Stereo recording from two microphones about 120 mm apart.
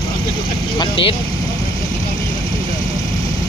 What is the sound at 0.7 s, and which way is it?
Speech, 45° left (ahead or behind).